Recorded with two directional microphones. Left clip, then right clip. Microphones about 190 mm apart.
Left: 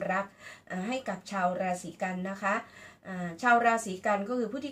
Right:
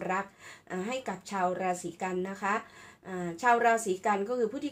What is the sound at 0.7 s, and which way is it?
A woman's voice, 40° right (ahead or behind).